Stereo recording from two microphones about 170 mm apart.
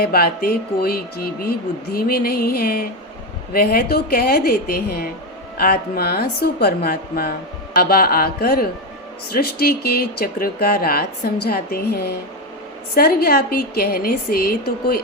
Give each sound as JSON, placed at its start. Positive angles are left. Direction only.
{"t": 0.0, "sound": "a woman's voice", "side_deg": 65}